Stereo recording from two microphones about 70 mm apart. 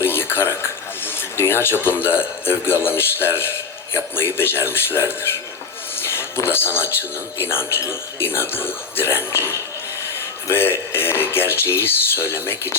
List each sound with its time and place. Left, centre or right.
0.0 s a man's voice: left
6.0 s a sound: left
7.3 s a man's voice: left